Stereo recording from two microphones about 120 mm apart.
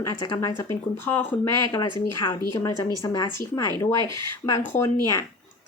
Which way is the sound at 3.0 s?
40° left (ahead or behind).